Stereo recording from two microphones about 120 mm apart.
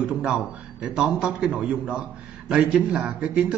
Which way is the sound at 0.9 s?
5° right (ahead or behind).